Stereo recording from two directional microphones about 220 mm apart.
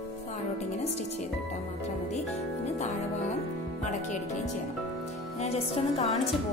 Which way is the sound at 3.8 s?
35° left (ahead or behind).